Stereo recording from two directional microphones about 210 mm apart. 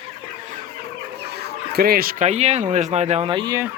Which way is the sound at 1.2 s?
50° right (ahead or behind).